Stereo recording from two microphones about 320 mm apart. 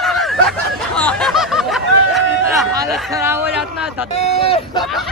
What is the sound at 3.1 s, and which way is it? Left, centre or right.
Speech, centre.